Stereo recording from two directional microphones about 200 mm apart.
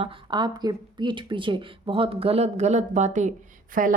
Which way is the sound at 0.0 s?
20° right (ahead or behind).